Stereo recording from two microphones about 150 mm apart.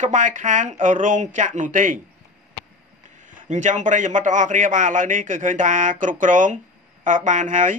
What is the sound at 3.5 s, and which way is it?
A man's voice, 55° right (ahead or behind).